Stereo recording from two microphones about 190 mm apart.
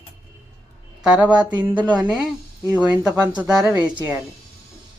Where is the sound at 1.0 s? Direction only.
5° right (ahead or behind).